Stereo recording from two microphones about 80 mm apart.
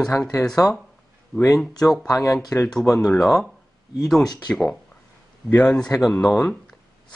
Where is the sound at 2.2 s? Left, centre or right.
Left.